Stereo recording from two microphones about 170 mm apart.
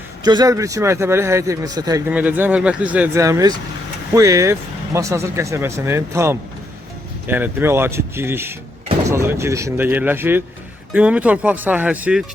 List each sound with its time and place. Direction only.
0.3 s speech: 25° right (ahead or behind)
2.0 s speech: 10° right (ahead or behind)